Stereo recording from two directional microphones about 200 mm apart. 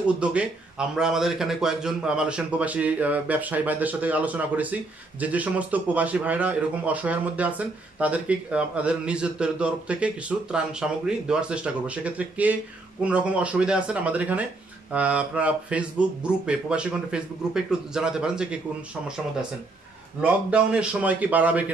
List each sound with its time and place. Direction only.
0.2 s a man's voice: 5° right (ahead or behind)
20.2 s a man's voice: 5° right (ahead or behind)